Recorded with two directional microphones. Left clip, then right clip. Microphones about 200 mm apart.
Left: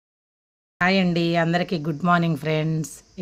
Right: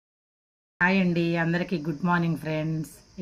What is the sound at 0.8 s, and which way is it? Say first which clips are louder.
Speech: left 3 dB; 65° left (ahead or behind).